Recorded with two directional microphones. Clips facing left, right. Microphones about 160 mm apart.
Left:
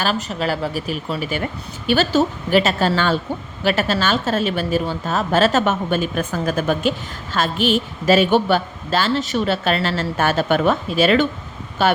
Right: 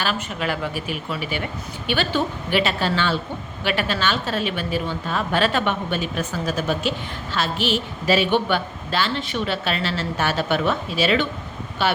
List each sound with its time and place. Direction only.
0.0 s a woman's voice: 40° left (ahead or behind)